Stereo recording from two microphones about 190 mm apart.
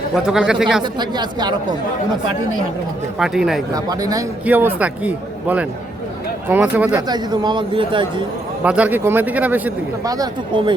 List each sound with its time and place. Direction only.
0.1 s speech: 5° right (ahead or behind)
0.8 s speech: 20° right (ahead or behind)
3.2 s speech: centre (ahead or behind)
3.8 s speech: 20° right (ahead or behind)
7.1 s speech: 20° right (ahead or behind)
8.6 s speech: 5° right (ahead or behind)